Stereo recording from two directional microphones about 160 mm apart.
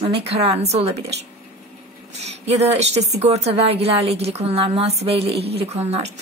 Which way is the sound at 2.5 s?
45° right (ahead or behind).